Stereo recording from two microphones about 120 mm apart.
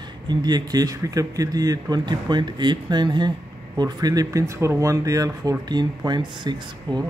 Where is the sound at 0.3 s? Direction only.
35° right (ahead or behind).